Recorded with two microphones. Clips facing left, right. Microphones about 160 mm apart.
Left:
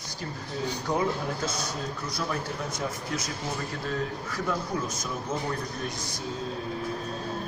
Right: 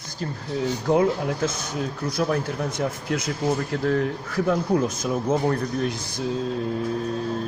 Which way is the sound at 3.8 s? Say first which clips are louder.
Right 9 dB; 65° right (ahead or behind).